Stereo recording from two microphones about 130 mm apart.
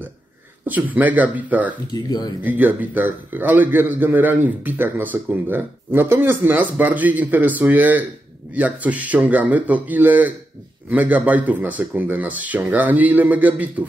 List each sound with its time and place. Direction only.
0.7 s a man's voice: 15° right (ahead or behind)
2.0 s speech: 30° left (ahead or behind)
2.4 s a man's voice: 15° right (ahead or behind)